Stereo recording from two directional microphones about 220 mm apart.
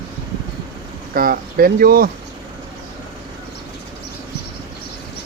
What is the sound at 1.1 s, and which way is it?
Speech, 40° right (ahead or behind).